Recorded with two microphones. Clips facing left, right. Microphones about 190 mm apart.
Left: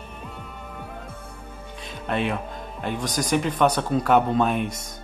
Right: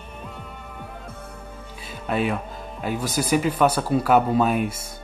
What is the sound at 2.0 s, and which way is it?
Speech, 5° right (ahead or behind).